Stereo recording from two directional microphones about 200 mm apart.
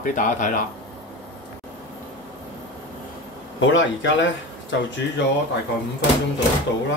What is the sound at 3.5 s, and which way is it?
Speech, 70° left (ahead or behind).